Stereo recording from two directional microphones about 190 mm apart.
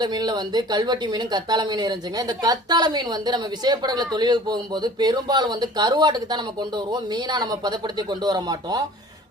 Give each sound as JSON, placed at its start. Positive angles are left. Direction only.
{"t": 0.0, "sound": "speech", "side_deg": -20}